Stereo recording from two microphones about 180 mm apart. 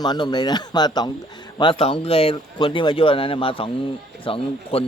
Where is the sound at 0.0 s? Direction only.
25° left (ahead or behind).